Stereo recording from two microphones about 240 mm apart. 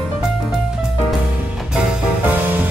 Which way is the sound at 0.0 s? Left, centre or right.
Centre.